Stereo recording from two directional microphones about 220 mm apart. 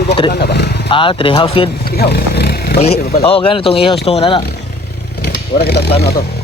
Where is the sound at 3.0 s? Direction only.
45° left (ahead or behind).